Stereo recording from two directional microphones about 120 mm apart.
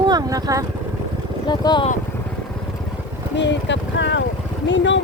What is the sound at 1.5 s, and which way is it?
Speech, 40° left (ahead or behind).